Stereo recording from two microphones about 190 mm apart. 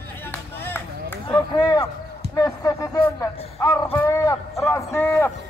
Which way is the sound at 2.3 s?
20° left (ahead or behind).